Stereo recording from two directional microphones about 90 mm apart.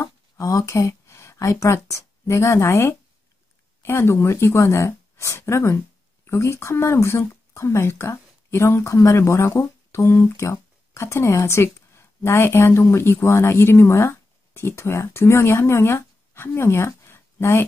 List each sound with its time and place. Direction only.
0.0 s speech: 35° left (ahead or behind)